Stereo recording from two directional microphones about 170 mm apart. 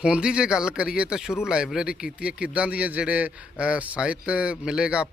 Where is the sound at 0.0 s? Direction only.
5° right (ahead or behind).